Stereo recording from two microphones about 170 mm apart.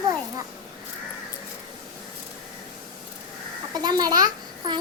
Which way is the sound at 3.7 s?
25° right (ahead or behind).